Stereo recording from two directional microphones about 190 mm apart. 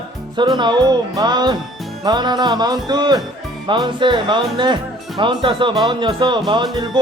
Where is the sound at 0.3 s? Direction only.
25° right (ahead or behind).